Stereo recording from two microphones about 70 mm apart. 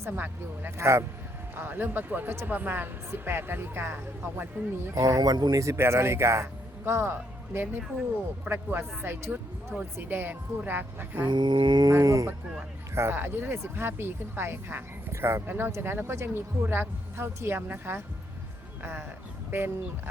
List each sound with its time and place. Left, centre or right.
0.0 s speech: right
0.8 s speech: right
1.5 s speech: right
4.9 s speech: right
11.3 s a sound: right
11.9 s speech: right
12.9 s speech: right